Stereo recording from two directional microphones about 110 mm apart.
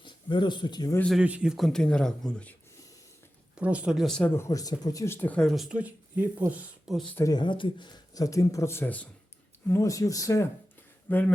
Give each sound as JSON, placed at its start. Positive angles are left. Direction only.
{"t": 0.0, "sound": "speech", "side_deg": 45}
{"t": 1.2, "sound": "speech", "side_deg": -10}
{"t": 3.6, "sound": "speech", "side_deg": -10}
{"t": 4.0, "sound": "speech", "side_deg": 5}
{"t": 4.4, "sound": "speech", "side_deg": 30}
{"t": 5.0, "sound": "speech", "side_deg": 20}
{"t": 5.4, "sound": "speech", "side_deg": 0}
{"t": 5.7, "sound": "speech", "side_deg": -15}
{"t": 6.8, "sound": "speech", "side_deg": 0}
{"t": 7.3, "sound": "speech", "side_deg": 45}
{"t": 9.6, "sound": "speech", "side_deg": 25}
{"t": 11.1, "sound": "speech", "side_deg": 15}